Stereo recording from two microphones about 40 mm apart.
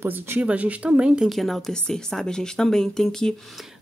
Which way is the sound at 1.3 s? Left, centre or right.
Centre.